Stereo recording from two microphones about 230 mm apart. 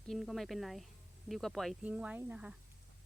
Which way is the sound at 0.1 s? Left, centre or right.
Centre.